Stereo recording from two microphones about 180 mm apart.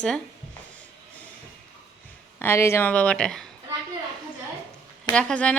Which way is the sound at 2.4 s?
15° left (ahead or behind).